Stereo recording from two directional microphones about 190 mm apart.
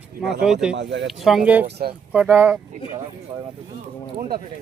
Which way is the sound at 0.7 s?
70° right (ahead or behind).